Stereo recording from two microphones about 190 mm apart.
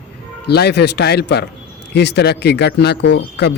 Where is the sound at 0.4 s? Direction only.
60° left (ahead or behind).